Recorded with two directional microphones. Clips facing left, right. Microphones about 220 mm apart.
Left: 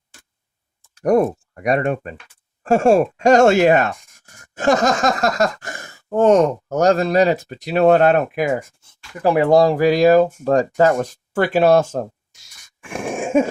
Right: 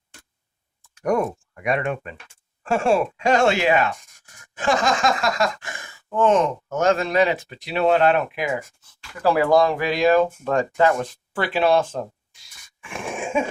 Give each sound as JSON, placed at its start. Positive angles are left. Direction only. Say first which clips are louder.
{"t": 0.9, "sound": "speech", "louder": "left 6 dB", "side_deg": 35}
{"t": 8.8, "sound": "speech", "louder": "left 3 dB", "side_deg": 20}